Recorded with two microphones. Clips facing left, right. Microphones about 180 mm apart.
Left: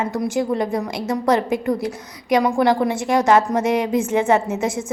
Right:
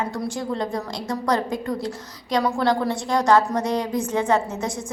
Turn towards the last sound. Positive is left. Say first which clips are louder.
# left 4 dB
turn(degrees=25)  # may be behind; listen again after turning